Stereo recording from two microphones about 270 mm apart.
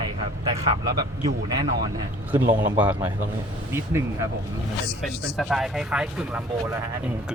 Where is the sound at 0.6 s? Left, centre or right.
Centre.